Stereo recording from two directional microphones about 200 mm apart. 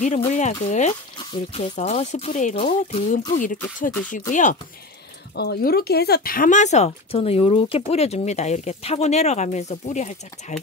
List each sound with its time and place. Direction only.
0.3 s speech: 35° left (ahead or behind)
5.3 s speech: 55° left (ahead or behind); by 10.6 s 35° left (ahead or behind)